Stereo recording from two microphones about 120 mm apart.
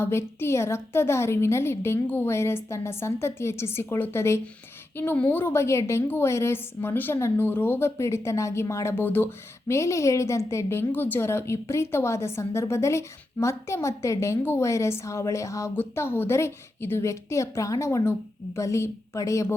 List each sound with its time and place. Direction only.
0.0 s a woman's voice: 20° left (ahead or behind)